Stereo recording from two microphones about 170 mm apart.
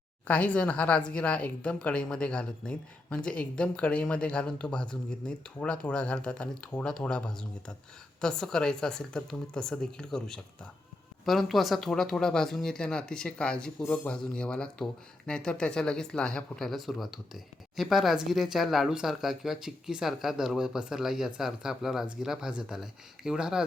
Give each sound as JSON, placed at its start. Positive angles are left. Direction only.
{"t": 0.3, "sound": "speech", "side_deg": 10}